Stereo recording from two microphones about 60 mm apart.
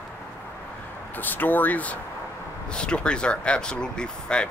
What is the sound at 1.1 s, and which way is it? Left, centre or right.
Speech, left.